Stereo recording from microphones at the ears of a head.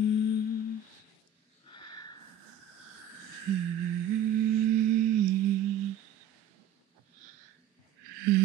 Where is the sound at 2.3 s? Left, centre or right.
Right.